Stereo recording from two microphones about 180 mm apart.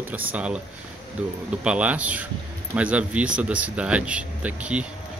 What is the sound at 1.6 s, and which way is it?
Speech, 5° right (ahead or behind).